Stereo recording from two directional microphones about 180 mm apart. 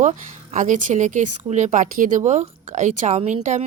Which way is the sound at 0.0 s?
45° right (ahead or behind).